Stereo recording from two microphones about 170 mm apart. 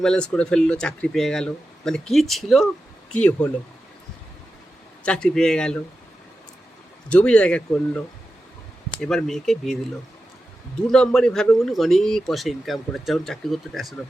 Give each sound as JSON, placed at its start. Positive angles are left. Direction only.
{"t": 0.0, "sound": "speech", "side_deg": 5}
{"t": 5.0, "sound": "speech", "side_deg": 5}
{"t": 7.1, "sound": "speech", "side_deg": 5}
{"t": 10.9, "sound": "speech", "side_deg": 5}